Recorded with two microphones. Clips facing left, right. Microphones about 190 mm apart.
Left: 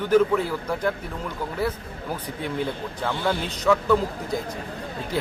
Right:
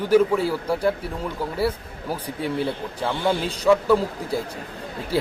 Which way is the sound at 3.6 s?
10° right (ahead or behind).